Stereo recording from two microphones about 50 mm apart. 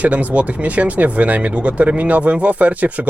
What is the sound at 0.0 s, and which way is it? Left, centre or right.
Speech, right.